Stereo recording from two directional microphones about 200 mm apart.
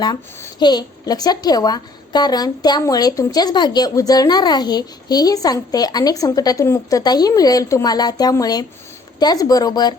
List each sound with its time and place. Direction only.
0.0 s speech: 15° left (ahead or behind)